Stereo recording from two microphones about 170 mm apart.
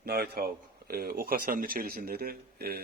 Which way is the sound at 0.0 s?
65° right (ahead or behind).